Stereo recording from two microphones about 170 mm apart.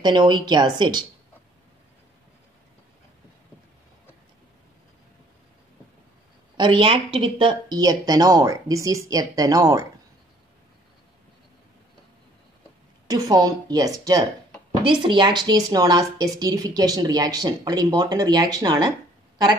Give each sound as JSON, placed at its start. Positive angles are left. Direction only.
{"t": 0.0, "sound": "speech", "side_deg": -25}
{"t": 6.5, "sound": "speech", "side_deg": -30}
{"t": 13.1, "sound": "speech", "side_deg": -25}